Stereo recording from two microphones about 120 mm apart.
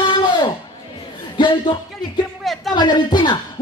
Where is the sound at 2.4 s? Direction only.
Centre (ahead or behind).